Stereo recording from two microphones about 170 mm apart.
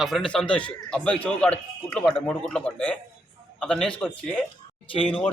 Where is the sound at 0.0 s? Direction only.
Centre (ahead or behind).